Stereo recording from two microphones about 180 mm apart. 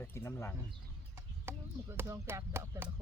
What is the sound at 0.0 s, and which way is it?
Bird, 15° left (ahead or behind).